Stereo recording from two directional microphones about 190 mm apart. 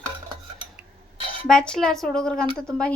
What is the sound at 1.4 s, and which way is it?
Speech, 5° left (ahead or behind).